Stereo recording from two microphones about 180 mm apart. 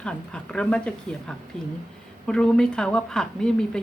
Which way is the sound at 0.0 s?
5° left (ahead or behind).